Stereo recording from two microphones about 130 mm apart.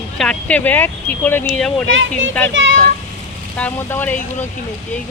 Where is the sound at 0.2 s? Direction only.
10° left (ahead or behind).